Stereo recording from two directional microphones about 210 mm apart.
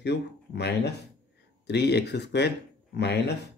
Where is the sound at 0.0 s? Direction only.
55° left (ahead or behind).